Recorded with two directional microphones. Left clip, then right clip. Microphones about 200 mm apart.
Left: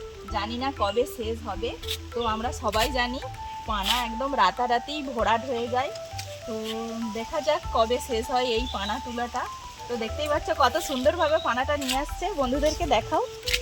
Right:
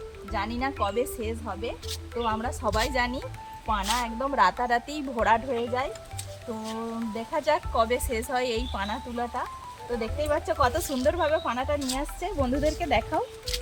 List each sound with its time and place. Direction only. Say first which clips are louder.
0.3 s speech: left 1 dB; centre (ahead or behind)
7.4 s speech: left 1 dB; centre (ahead or behind)
13.0 s speech: left 2 dB; 30° left (ahead or behind)